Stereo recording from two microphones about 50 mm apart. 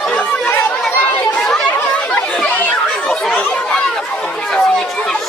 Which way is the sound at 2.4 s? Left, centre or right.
Left.